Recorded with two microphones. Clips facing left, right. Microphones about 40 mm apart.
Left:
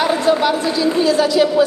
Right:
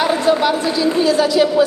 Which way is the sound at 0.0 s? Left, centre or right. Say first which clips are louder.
Even; centre.